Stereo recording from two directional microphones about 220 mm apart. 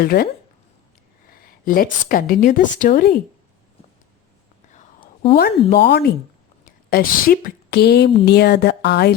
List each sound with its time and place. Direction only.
0.0 s a woman's voice: 45° left (ahead or behind)
1.6 s a woman's voice: 40° left (ahead or behind)
5.3 s a woman's voice: 45° left (ahead or behind)